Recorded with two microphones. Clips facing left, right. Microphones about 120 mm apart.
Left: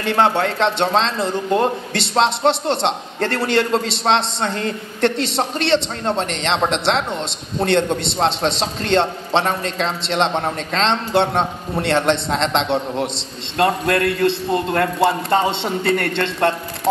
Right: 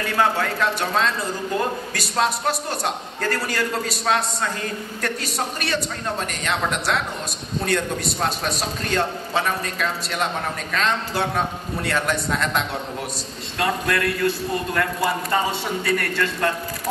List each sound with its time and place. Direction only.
0.0 s speech: 25° left (ahead or behind)